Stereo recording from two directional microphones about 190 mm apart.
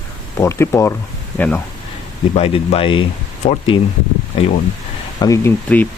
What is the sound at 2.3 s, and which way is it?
Speech, 30° left (ahead or behind).